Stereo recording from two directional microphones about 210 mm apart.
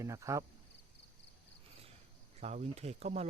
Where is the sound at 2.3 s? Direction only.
30° right (ahead or behind).